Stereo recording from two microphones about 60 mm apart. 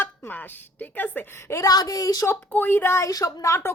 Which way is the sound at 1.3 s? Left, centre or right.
Left.